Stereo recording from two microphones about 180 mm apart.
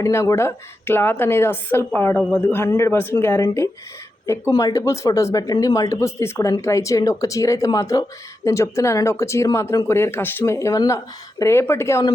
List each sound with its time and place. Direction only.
0.0 s speech: 15° left (ahead or behind)